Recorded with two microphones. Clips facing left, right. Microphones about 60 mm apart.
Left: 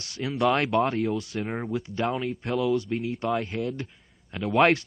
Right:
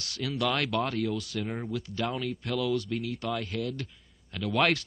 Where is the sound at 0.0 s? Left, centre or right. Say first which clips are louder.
Left 5 dB; left.